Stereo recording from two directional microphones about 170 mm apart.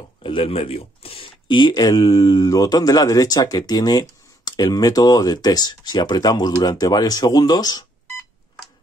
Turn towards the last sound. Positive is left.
turn(degrees=25)  # may be behind; listen again after turning